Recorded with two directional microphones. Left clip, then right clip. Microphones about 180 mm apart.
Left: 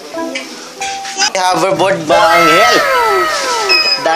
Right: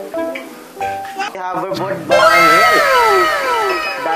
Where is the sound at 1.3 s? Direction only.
80° left.